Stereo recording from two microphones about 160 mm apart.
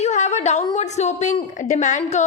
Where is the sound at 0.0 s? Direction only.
45° left (ahead or behind).